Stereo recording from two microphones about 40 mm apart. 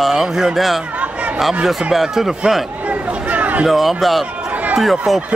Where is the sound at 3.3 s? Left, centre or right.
Right.